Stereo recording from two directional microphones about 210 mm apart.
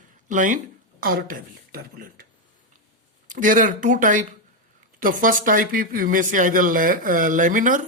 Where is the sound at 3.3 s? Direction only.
40° right (ahead or behind).